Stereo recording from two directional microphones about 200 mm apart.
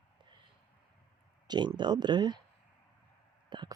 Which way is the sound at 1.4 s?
20° right (ahead or behind).